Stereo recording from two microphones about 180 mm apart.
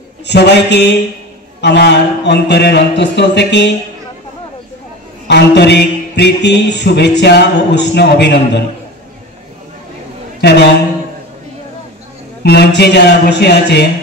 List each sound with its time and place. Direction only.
0.3 s a man's voice: 70° left (ahead or behind)
5.3 s a man's voice: 65° left (ahead or behind)
10.4 s a man's voice: 70° left (ahead or behind)
12.4 s a man's voice: 65° left (ahead or behind)